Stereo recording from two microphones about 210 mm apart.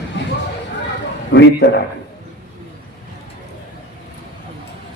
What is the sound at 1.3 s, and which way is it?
Speech, 55° left (ahead or behind).